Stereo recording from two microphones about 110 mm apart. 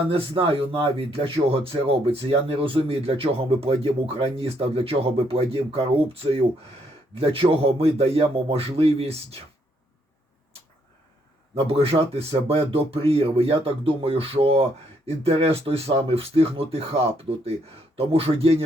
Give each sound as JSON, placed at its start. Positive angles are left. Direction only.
{"t": 0.1, "sound": "speech", "side_deg": -55}
{"t": 11.5, "sound": "speech", "side_deg": -60}